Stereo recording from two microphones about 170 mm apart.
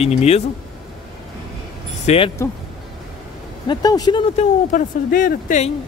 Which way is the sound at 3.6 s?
25° left (ahead or behind).